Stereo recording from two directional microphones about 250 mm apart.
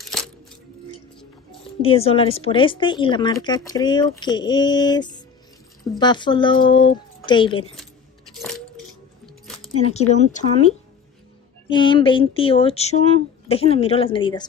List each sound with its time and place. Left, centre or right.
0.0 s a sound: centre
1.9 s speech: left
8.4 s squish: centre
9.8 s speech: left
11.7 s speech: centre